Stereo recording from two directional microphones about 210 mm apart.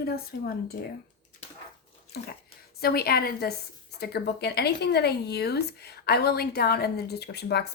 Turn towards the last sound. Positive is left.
turn(degrees=50)  # may be behind; listen again after turning